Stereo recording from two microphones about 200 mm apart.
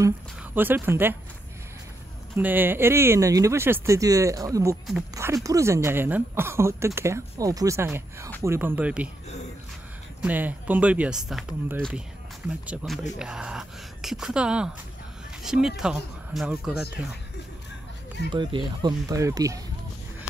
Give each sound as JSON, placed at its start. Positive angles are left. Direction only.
{"t": 0.6, "sound": "speech", "side_deg": -10}
{"t": 2.3, "sound": "speech", "side_deg": -10}
{"t": 10.2, "sound": "speech", "side_deg": -10}
{"t": 18.3, "sound": "speech", "side_deg": -25}